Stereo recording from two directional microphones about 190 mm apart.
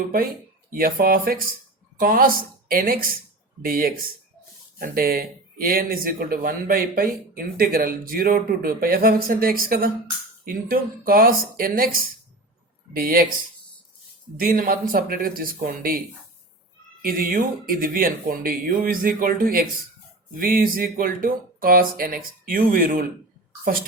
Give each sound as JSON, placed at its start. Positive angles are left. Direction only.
{"t": 0.7, "sound": "speech", "side_deg": -50}
{"t": 14.3, "sound": "speech", "side_deg": -50}